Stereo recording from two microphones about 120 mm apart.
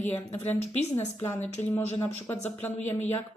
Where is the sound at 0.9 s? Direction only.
20° left (ahead or behind).